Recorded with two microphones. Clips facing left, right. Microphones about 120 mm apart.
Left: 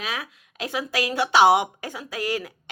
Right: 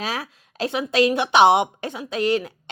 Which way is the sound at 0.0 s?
35° right (ahead or behind).